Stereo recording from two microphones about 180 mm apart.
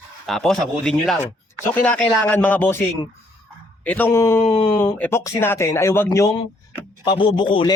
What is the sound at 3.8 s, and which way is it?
Speech, 10° left (ahead or behind).